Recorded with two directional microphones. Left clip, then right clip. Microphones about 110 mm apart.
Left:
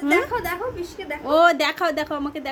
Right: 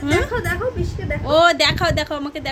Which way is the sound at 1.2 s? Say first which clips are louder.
Right 3 dB; 20° left (ahead or behind).